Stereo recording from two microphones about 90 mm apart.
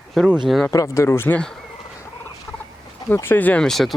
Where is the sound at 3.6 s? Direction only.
5° left (ahead or behind).